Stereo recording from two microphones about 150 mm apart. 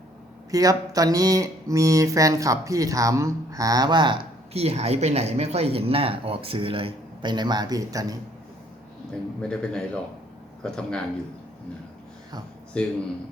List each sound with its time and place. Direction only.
0.5 s speech: 25° right (ahead or behind)
9.4 s a man's voice: 5° left (ahead or behind)
12.7 s speech: 10° left (ahead or behind)